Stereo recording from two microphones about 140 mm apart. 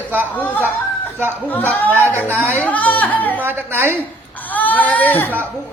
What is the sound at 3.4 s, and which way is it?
Speech, 15° right (ahead or behind).